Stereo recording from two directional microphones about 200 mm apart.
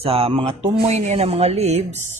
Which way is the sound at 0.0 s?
30° right (ahead or behind).